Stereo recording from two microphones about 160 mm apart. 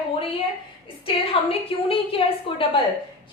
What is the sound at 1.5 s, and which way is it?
A woman's voice, 35° left (ahead or behind).